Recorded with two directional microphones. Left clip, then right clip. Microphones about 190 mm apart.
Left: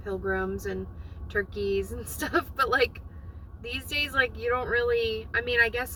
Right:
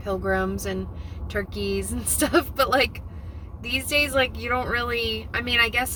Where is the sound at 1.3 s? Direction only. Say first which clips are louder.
Even; 30° right (ahead or behind).